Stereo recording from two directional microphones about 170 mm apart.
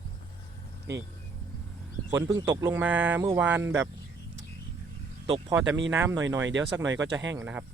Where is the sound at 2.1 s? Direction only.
15° right (ahead or behind).